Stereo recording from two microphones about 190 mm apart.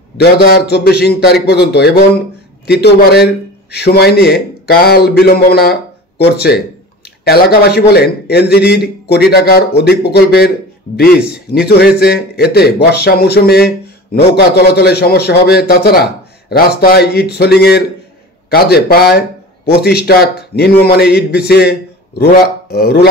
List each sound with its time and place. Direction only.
0.2 s a man's voice: 60° left (ahead or behind)
12.0 s a man's voice: 55° left (ahead or behind)